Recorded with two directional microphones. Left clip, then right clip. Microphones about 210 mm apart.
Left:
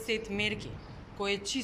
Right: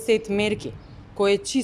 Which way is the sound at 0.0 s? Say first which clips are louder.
Right 10 dB; 55° right (ahead or behind).